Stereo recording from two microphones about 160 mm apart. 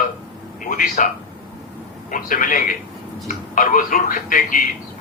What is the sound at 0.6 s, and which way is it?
A man's voice, 55° left (ahead or behind).